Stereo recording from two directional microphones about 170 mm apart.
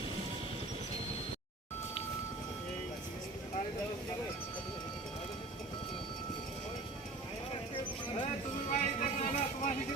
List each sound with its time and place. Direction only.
8.7 s vehicle: 45° left (ahead or behind)